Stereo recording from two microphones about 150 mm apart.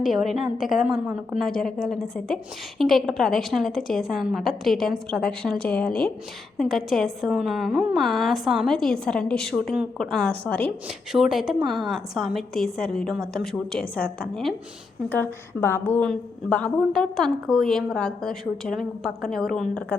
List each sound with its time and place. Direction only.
0.0 s a woman's voice: centre (ahead or behind)
10.8 s a woman's voice: 5° right (ahead or behind)
15.1 s a woman's voice: 15° left (ahead or behind)